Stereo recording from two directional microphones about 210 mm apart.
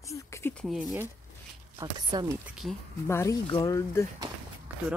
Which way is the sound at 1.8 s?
20° right (ahead or behind).